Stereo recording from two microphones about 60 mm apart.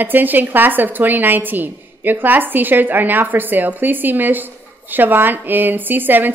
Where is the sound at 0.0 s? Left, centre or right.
Right.